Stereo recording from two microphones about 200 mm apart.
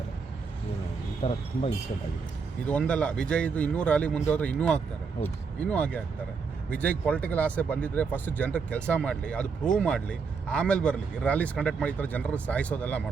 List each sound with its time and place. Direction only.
1.2 s speech: 30° left (ahead or behind)
2.6 s a man's voice: 5° left (ahead or behind)